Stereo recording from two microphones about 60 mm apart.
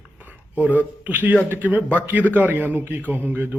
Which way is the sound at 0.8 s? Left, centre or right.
Right.